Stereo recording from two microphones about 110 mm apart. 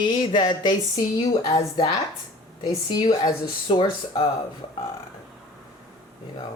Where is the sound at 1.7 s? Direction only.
35° left (ahead or behind).